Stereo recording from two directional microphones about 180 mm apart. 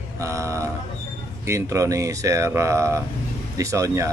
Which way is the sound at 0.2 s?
15° right (ahead or behind).